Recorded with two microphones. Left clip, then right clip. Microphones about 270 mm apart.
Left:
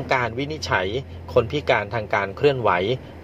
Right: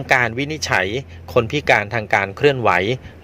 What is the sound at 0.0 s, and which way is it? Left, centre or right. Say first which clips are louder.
Speech: right 5 dB; right.